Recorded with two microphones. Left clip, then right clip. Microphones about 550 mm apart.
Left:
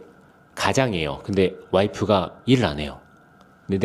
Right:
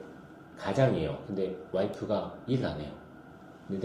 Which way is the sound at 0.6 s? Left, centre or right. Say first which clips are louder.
Left 7 dB; left.